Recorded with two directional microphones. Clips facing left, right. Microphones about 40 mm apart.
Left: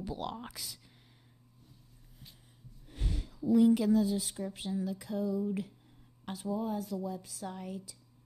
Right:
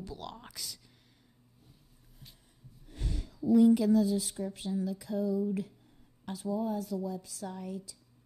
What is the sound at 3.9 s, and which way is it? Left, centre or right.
Speech, centre.